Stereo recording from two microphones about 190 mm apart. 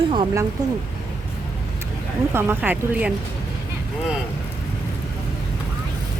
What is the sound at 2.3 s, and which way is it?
Speech, 10° right (ahead or behind).